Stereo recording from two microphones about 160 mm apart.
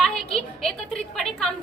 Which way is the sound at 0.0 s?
Centre (ahead or behind).